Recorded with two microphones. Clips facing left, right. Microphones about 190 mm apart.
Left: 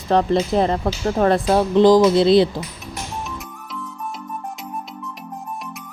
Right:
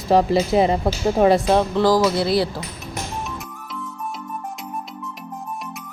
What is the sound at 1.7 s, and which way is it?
Speech, 20° left (ahead or behind).